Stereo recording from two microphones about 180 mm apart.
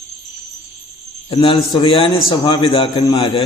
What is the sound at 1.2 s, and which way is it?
A man's voice, 30° left (ahead or behind).